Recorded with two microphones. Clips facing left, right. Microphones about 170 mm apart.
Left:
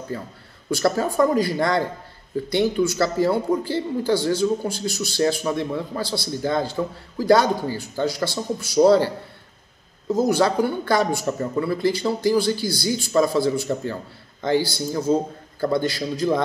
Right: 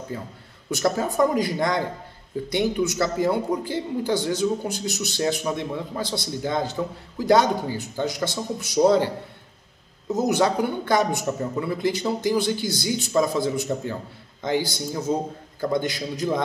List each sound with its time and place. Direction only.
0.1 s a man's voice: 15° right (ahead or behind)
10.1 s a man's voice: 20° right (ahead or behind)